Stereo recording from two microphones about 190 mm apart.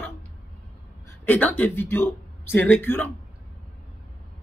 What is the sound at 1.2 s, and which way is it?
A woman's voice, 10° left (ahead or behind).